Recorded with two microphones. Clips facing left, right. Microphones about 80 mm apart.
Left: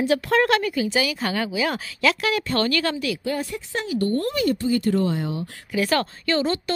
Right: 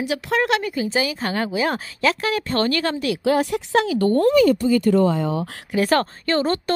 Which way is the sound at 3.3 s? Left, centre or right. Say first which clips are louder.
Right 8 dB; right.